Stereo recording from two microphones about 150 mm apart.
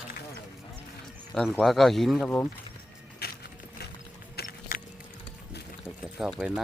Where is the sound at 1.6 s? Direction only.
Centre (ahead or behind).